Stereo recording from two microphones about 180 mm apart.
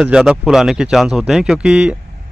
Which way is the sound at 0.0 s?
5° right (ahead or behind).